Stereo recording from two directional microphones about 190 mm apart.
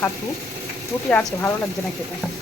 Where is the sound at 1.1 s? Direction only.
10° left (ahead or behind).